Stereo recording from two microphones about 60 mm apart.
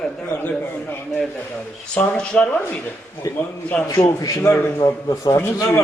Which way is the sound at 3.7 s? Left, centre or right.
Centre.